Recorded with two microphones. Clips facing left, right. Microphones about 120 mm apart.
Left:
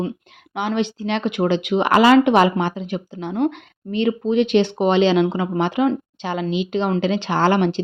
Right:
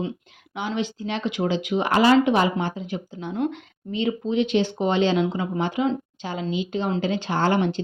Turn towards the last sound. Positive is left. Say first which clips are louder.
# left 4 dB
turn(degrees=90)